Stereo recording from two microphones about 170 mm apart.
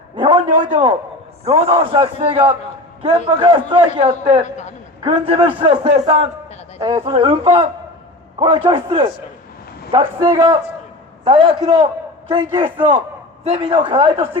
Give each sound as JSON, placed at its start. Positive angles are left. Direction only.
{"t": 0.2, "sound": "a sound", "side_deg": -30}
{"t": 1.5, "sound": "a man's voice", "side_deg": -35}
{"t": 4.4, "sound": "a man's voice", "side_deg": 45}
{"t": 5.0, "sound": "a man's voice", "side_deg": -35}
{"t": 5.9, "sound": "a man's voice", "side_deg": -40}
{"t": 6.7, "sound": "a man's voice", "side_deg": -30}
{"t": 11.3, "sound": "a man's voice", "side_deg": -30}